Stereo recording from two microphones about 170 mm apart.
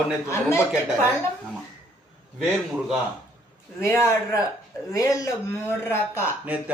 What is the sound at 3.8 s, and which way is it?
Speech, 15° left (ahead or behind).